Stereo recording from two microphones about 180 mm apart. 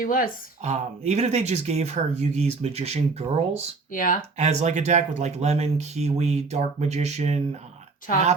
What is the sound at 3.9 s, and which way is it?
Speech, 50° left (ahead or behind).